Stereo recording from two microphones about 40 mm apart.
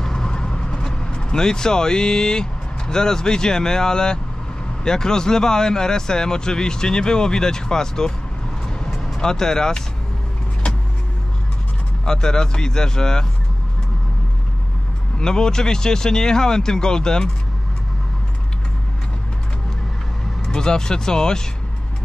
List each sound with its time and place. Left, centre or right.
0.0 s vehicle: centre
4.8 s speech: centre
9.2 s speech: centre
12.0 s speech: centre
15.1 s speech: centre
20.4 s speech: centre